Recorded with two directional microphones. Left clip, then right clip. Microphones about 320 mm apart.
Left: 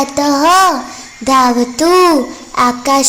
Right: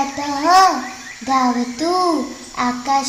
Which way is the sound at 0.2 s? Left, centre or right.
Left.